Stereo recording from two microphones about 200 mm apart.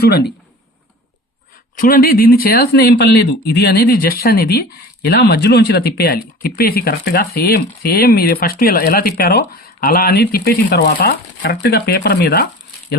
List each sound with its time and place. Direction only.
0.0 s speech: 55° left (ahead or behind)
1.7 s speech: 45° left (ahead or behind)